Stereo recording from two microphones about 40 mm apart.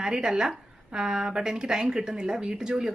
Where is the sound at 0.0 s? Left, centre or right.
Centre.